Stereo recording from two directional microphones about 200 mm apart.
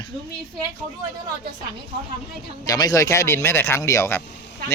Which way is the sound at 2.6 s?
20° left (ahead or behind).